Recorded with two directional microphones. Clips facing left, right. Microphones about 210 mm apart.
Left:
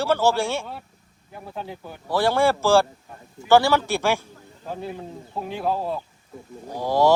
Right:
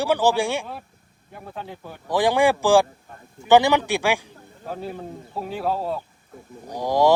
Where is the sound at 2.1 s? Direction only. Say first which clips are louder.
Right 1 dB; 15° right (ahead or behind).